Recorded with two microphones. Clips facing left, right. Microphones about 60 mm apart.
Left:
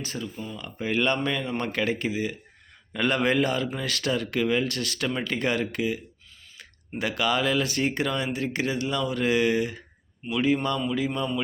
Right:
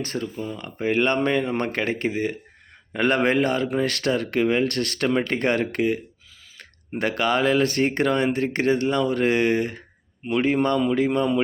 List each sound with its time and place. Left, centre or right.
0.0 s speech: right
7.0 s speech: right